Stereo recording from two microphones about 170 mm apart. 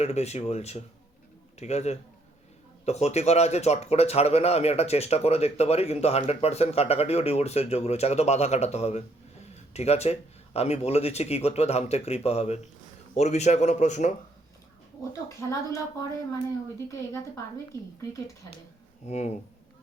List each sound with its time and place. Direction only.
0.0 s speech: 40° left (ahead or behind)
15.1 s a woman's voice: 20° left (ahead or behind)
16.7 s speech: 20° left (ahead or behind)
19.0 s speech: 40° left (ahead or behind)